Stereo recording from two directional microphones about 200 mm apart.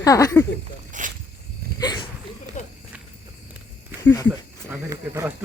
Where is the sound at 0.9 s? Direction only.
40° right (ahead or behind).